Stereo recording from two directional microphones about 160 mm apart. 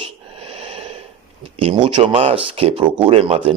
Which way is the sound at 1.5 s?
35° right (ahead or behind).